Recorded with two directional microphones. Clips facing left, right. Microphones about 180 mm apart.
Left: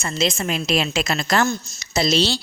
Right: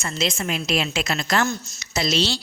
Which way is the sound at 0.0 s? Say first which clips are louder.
Left 3 dB; 30° left (ahead or behind).